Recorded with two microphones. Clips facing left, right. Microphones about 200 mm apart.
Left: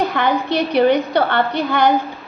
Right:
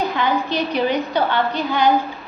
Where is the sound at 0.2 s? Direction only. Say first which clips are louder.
Left 3 dB; 60° left (ahead or behind).